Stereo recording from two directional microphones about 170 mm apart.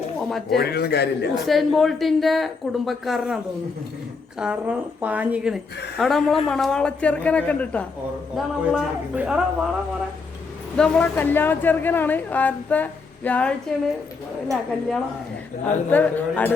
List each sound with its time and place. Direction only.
0.2 s speech: centre (ahead or behind)
0.5 s a man's voice: 70° left (ahead or behind)
1.5 s a man's voice: centre (ahead or behind)
8.4 s a man's voice: 5° right (ahead or behind)
10.8 s a woman's voice: 5° left (ahead or behind)